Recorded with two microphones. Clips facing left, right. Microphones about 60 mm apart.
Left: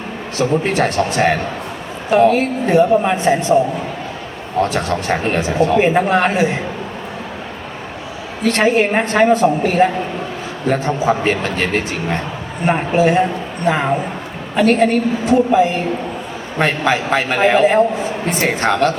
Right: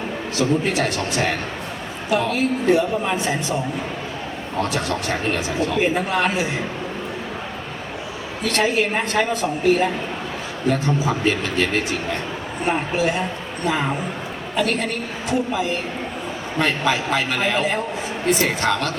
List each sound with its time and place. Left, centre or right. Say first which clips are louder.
0.3 s speech: left 4 dB; left
4.7 s speech: left 5 dB; left
8.5 s speech: left 5 dB; left
14.5 s speech: left 9 dB; left